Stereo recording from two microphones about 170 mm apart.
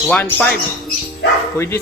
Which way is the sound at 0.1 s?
10° left (ahead or behind).